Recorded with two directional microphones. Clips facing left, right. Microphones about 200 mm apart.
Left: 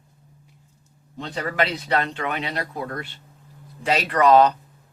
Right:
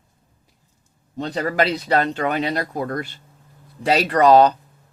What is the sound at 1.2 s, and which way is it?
Speech, 40° right (ahead or behind).